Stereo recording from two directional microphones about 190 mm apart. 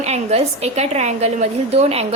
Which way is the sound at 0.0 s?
35° right (ahead or behind).